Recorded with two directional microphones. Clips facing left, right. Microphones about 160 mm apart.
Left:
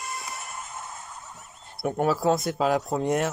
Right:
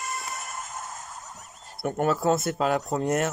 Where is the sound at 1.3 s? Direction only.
40° right (ahead or behind).